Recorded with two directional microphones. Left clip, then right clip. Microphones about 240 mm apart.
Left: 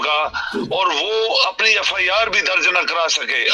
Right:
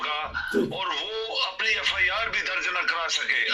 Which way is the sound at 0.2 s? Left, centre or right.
Left.